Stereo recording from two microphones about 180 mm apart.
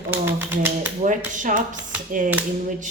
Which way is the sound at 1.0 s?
45° right (ahead or behind).